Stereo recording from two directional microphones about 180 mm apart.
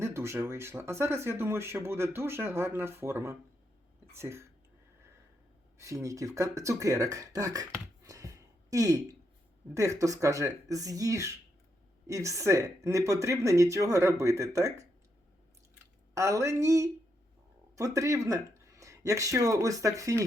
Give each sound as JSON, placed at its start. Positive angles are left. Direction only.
{"t": 0.0, "sound": "speech", "side_deg": -15}
{"t": 5.7, "sound": "speech", "side_deg": -15}
{"t": 16.1, "sound": "speech", "side_deg": -15}